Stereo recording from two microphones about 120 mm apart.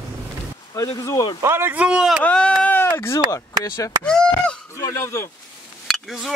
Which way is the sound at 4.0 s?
10° left (ahead or behind).